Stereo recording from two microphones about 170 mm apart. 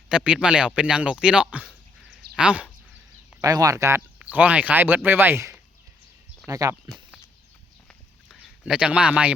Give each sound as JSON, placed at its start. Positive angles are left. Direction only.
{"t": 0.1, "sound": "speech", "side_deg": -5}
{"t": 3.4, "sound": "speech", "side_deg": -20}
{"t": 6.8, "sound": "a sound", "side_deg": 0}
{"t": 8.3, "sound": "speech", "side_deg": 0}